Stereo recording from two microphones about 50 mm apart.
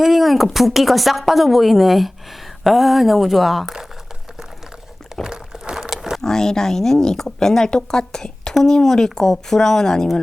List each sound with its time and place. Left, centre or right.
0.0 s speech: centre
5.2 s rowboat: centre
5.9 s a sound: centre
6.2 s speech: centre